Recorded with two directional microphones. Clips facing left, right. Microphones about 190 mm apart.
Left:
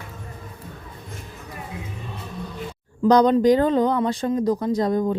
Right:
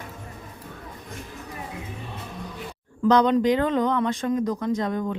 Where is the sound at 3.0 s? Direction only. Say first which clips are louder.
Left 3 dB; 40° left (ahead or behind).